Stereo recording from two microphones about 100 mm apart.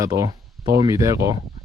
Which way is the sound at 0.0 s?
35° right (ahead or behind).